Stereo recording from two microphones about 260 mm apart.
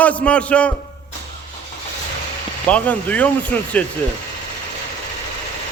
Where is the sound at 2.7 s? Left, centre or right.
Centre.